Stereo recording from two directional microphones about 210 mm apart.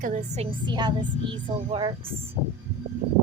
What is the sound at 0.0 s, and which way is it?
Speech, 35° right (ahead or behind).